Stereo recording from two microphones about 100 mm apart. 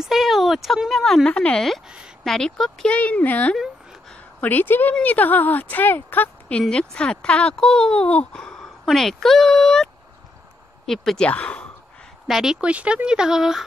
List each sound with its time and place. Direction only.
0.0 s speech: 5° right (ahead or behind); by 3.5 s 15° left (ahead or behind)
3.5 s a sound: centre (ahead or behind)
4.4 s a woman's voice: 20° left (ahead or behind); by 9.8 s 5° left (ahead or behind)
10.9 s speech: 5° left (ahead or behind)
12.3 s speech: 5° right (ahead or behind)